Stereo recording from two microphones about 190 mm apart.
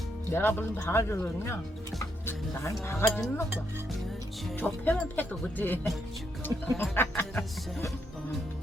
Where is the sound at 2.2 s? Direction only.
10° left (ahead or behind).